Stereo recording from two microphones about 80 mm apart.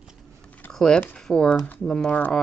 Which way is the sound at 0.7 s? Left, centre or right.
Centre.